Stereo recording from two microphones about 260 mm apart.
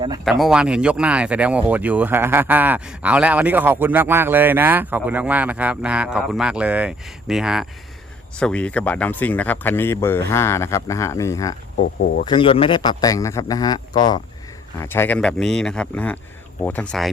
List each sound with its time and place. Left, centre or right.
0.3 s speech: centre
11.9 s speech: left
12.2 s speech: centre